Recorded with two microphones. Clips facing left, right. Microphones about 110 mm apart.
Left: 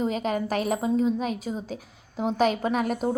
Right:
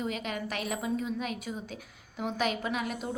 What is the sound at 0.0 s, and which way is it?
A woman's voice, 35° left (ahead or behind).